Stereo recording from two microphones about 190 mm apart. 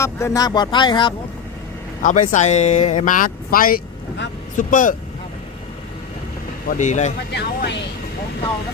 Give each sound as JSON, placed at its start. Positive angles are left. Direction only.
{"t": 0.0, "sound": "speech", "side_deg": 15}
{"t": 2.0, "sound": "speech", "side_deg": 40}
{"t": 6.7, "sound": "speech", "side_deg": 40}
{"t": 7.3, "sound": "speech", "side_deg": 65}